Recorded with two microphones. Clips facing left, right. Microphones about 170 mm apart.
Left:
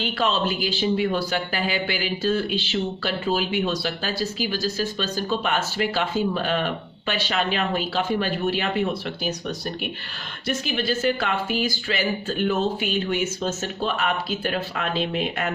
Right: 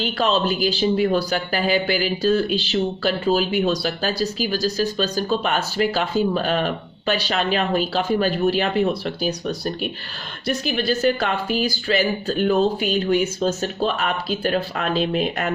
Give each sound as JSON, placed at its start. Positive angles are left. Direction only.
{"t": 0.0, "sound": "speech", "side_deg": -40}